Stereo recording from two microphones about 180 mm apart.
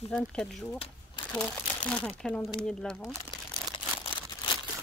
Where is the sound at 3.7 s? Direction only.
30° left (ahead or behind).